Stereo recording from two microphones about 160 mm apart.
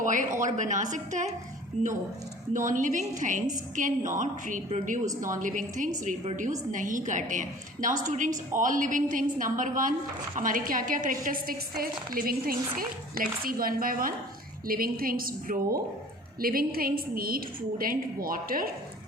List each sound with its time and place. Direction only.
0.0 s a woman's voice: 55° right (ahead or behind)
2.5 s a woman's voice: 55° right (ahead or behind)